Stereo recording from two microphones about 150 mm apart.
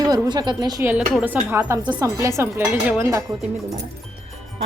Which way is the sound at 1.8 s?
25° right (ahead or behind).